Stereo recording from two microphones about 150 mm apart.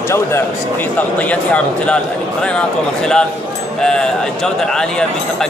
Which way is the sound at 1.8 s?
5° left (ahead or behind).